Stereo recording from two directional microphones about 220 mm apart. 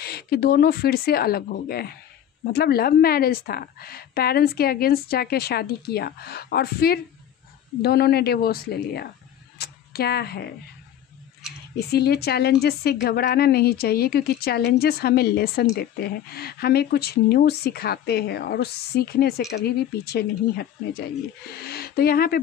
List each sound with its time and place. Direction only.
0.0 s a woman's voice: 45° left (ahead or behind)
9.6 s a sound: 45° left (ahead or behind)
11.7 s a woman's voice: 45° left (ahead or behind)